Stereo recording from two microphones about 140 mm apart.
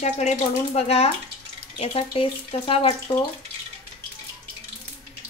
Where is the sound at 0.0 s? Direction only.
55° left (ahead or behind).